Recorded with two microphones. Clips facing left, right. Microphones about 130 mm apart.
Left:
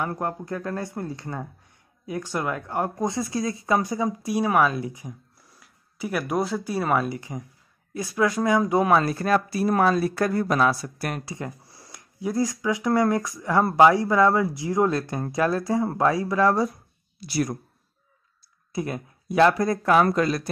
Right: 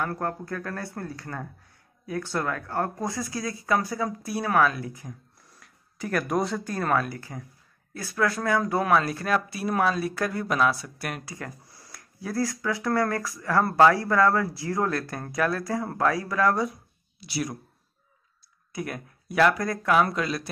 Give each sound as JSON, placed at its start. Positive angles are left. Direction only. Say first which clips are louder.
{"t": 0.0, "sound": "speech", "louder": "left 1 dB", "side_deg": 20}
{"t": 5.4, "sound": "speech", "louder": "even", "side_deg": 0}
{"t": 7.1, "sound": "speech", "louder": "left 5 dB", "side_deg": 20}
{"t": 9.3, "sound": "speech", "louder": "left 4 dB", "side_deg": 0}
{"t": 11.2, "sound": "speech", "louder": "left 4 dB", "side_deg": 25}
{"t": 16.6, "sound": "a sound", "louder": "left 3 dB", "side_deg": 0}
{"t": 18.7, "sound": "speech", "louder": "left 4 dB", "side_deg": 25}